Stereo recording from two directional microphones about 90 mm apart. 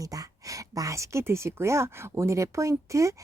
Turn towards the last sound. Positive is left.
turn(degrees=-35)  # may be behind; listen again after turning